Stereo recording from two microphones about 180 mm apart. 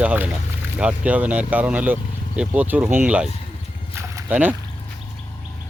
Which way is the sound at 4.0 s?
10° right (ahead or behind).